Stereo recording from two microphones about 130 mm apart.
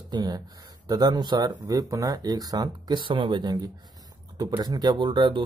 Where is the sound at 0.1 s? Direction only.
35° right (ahead or behind).